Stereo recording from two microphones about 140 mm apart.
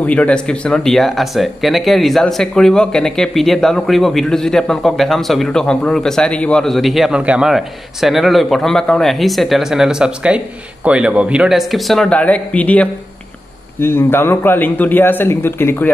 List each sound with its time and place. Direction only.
0.0 s a man's voice: 10° left (ahead or behind)